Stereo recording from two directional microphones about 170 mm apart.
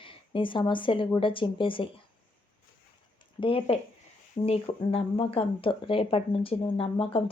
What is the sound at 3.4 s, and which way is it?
Speech, 30° left (ahead or behind).